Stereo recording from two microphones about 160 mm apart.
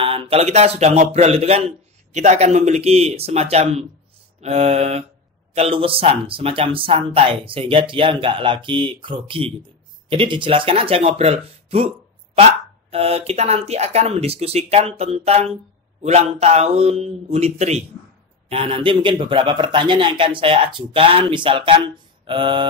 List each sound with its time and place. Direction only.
0.0 s a man's voice: 35° right (ahead or behind)